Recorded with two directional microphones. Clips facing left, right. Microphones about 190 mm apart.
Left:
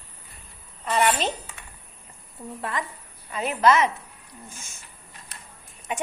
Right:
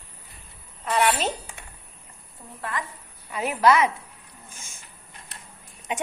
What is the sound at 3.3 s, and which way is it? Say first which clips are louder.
Speech: even; 10° right (ahead or behind).